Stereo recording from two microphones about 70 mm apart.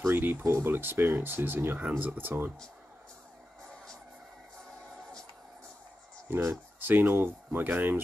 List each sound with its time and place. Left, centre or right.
0.0 s speech: right
4.6 s music: centre
6.2 s speech: right